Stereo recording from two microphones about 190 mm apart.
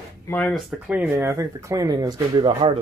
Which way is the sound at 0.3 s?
5° left (ahead or behind).